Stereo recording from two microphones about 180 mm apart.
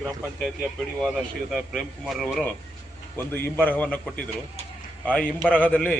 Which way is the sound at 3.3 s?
10° left (ahead or behind).